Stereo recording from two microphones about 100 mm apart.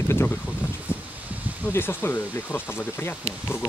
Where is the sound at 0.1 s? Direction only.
20° left (ahead or behind).